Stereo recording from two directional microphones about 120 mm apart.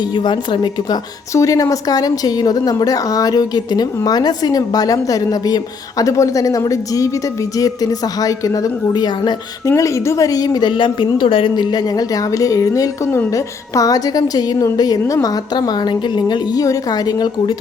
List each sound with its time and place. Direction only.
0.3 s a woman's voice: 40° left (ahead or behind)
1.3 s a woman's voice: 25° left (ahead or behind)
9.6 s a woman's voice: 25° left (ahead or behind)